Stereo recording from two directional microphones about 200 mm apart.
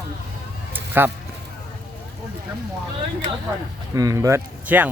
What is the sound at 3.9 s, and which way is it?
Speech, 15° right (ahead or behind).